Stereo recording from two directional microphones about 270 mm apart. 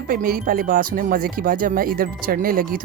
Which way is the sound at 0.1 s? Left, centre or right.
Right.